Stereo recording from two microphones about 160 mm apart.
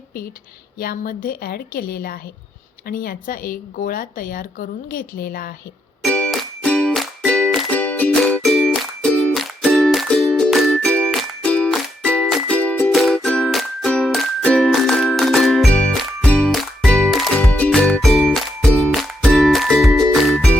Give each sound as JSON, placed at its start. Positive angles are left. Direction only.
{"t": 0.8, "sound": "a woman's voice", "side_deg": 65}
{"t": 6.0, "sound": "music", "side_deg": 5}